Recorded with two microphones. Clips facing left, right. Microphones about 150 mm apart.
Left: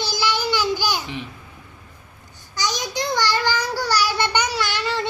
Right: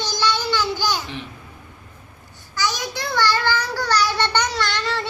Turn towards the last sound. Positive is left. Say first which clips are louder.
# even
turn(degrees=10)  # may be behind; listen again after turning